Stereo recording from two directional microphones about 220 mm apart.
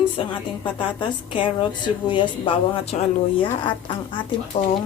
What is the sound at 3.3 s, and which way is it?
A woman's voice, 20° left (ahead or behind).